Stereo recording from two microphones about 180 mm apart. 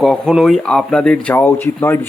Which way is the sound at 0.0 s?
Centre (ahead or behind).